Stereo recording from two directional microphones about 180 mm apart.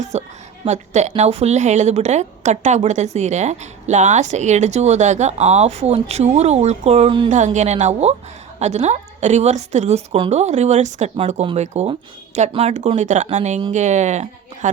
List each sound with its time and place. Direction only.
0.0 s a woman's voice: 40° right (ahead or behind)